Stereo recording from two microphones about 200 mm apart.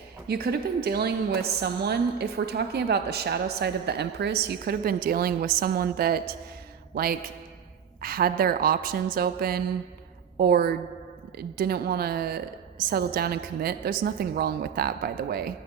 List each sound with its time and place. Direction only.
0.3 s a woman's voice: 50° right (ahead or behind)